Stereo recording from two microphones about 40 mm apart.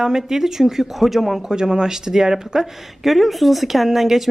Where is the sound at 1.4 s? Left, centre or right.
Centre.